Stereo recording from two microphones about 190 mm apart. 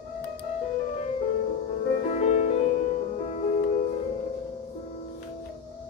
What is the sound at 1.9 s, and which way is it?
Music, 35° left (ahead or behind).